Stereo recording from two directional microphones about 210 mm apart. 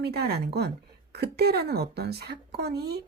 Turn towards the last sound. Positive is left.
turn(degrees=-50)  # may be behind; listen again after turning